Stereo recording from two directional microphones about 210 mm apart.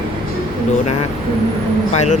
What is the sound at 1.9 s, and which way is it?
Speech, 35° left (ahead or behind).